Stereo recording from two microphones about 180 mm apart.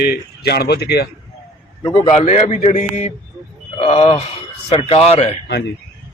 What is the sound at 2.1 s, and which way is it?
A man's voice, 40° left (ahead or behind).